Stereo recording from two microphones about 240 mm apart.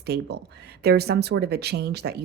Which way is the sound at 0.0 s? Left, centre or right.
Right.